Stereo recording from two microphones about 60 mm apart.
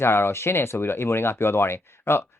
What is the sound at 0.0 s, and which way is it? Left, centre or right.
Speech, left.